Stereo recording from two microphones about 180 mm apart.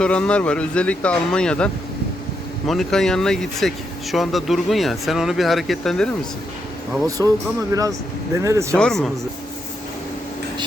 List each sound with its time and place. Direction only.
0.0 s speech: 5° left (ahead or behind)
7.2 s speech: 15° right (ahead or behind)
8.4 s speech: 15° right (ahead or behind)
8.7 s speech: 5° left (ahead or behind)